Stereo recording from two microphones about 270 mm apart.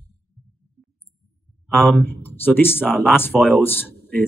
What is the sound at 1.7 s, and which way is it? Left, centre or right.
Speech, centre.